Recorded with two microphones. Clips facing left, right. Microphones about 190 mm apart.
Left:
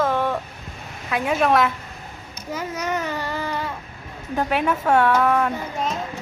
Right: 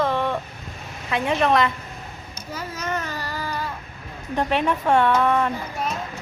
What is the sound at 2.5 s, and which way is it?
Speech, 20° left (ahead or behind).